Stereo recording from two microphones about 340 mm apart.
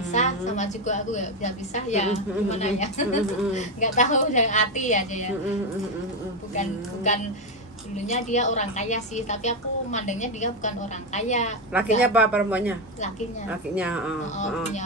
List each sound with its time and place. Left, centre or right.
0.1 s a woman's voice: left
6.5 s a woman's voice: left
12.0 s speech: centre
14.3 s a woman's voice: left